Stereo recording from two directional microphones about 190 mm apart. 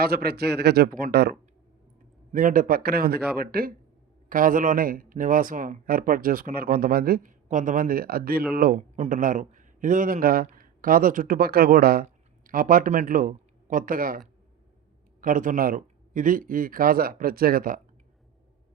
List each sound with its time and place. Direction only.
0.0 s a man's voice: 55° right (ahead or behind)
15.2 s speech: 45° right (ahead or behind)